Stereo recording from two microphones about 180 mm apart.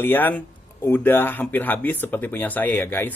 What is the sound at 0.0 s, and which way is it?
A man's voice, 10° left (ahead or behind).